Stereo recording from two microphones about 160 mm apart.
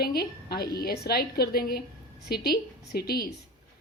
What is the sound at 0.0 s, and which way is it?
Speech, 75° left (ahead or behind).